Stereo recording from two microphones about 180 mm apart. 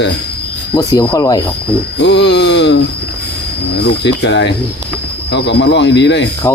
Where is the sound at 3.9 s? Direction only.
75° left (ahead or behind).